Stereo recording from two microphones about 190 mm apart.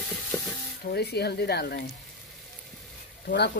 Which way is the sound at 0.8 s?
60° left (ahead or behind).